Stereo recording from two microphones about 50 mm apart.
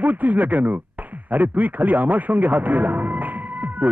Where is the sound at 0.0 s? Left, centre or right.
Right.